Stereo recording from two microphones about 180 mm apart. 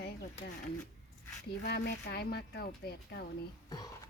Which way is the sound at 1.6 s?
65° left (ahead or behind).